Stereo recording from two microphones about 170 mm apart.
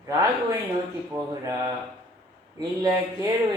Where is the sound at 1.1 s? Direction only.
20° right (ahead or behind).